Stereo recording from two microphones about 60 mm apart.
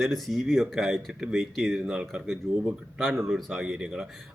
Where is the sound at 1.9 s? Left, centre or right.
Centre.